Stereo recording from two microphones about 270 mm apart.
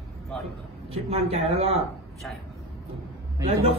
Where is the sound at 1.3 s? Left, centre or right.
Right.